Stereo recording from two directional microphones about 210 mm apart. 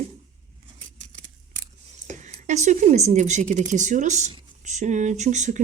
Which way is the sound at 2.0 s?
35° right (ahead or behind).